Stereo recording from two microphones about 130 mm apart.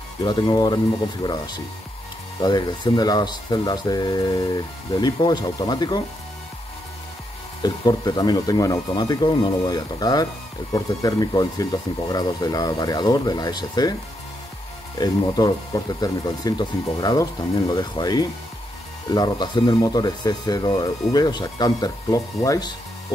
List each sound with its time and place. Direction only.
0.2 s speech: 35° left (ahead or behind)
7.6 s speech: 30° left (ahead or behind)
15.0 s speech: 30° left (ahead or behind)